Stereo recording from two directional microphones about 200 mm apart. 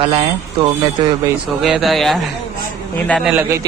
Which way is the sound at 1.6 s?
Centre (ahead or behind).